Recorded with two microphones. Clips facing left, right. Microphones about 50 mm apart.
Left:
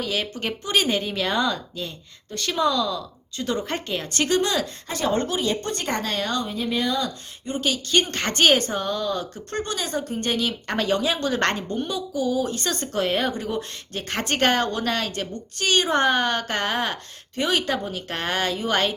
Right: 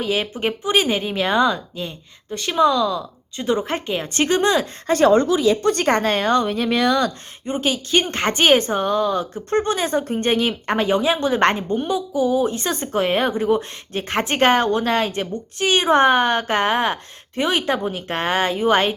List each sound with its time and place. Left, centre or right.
0.0 s a woman's voice: centre
4.9 s a woman's voice: right
5.6 s speech: right
5.9 s speech: right
6.4 s speech: right
7.4 s speech: right